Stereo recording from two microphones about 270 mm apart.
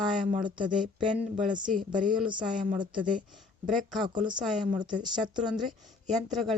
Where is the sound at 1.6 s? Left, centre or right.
Right.